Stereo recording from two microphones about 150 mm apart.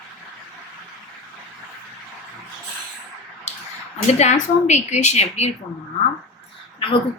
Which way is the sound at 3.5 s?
45° left (ahead or behind).